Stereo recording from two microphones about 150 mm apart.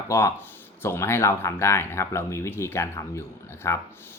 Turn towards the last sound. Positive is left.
turn(degrees=20)  # may be behind; listen again after turning